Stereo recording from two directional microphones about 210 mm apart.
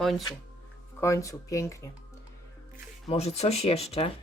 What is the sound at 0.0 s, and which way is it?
Speech, centre (ahead or behind).